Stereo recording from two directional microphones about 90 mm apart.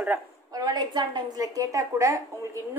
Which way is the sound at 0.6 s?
45° right (ahead or behind).